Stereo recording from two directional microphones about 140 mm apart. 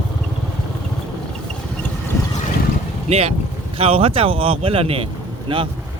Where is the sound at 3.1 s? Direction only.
50° right (ahead or behind).